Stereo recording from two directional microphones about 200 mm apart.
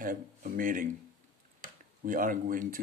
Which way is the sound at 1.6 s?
45° right (ahead or behind).